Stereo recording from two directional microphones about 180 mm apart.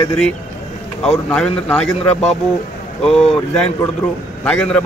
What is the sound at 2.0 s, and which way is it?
Speech, 35° left (ahead or behind).